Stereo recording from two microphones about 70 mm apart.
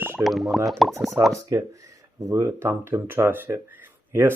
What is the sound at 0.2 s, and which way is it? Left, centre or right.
Speech, centre.